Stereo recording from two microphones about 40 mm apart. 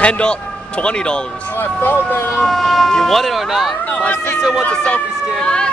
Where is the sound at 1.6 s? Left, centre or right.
Left.